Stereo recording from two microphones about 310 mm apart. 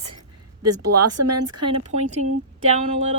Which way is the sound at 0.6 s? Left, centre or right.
Right.